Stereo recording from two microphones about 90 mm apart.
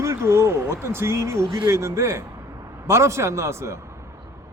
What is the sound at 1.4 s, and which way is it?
Speech, 70° right (ahead or behind).